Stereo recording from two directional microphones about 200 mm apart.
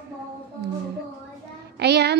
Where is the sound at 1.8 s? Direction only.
55° right (ahead or behind).